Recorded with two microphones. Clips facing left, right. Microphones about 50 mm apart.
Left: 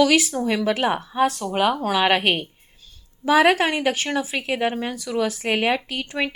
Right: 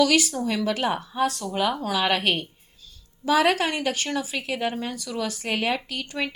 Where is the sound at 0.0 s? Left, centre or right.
Centre.